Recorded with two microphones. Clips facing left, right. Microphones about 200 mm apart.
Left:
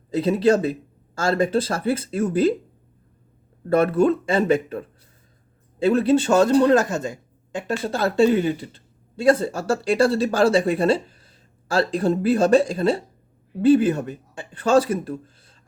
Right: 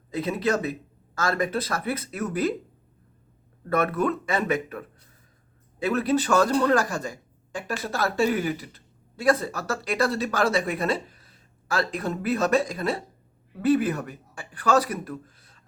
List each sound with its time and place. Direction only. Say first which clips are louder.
0.1 s speech: left 7 dB; 30° left (ahead or behind)
3.7 s speech: left 7 dB; 30° left (ahead or behind)